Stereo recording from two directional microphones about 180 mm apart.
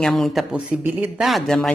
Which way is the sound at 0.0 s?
Centre (ahead or behind).